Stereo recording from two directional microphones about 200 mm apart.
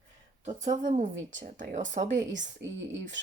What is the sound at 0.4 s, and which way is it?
Speech, 35° right (ahead or behind).